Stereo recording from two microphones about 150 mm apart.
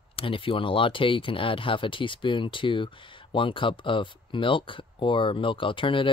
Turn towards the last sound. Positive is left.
turn(degrees=35)  # may be behind; listen again after turning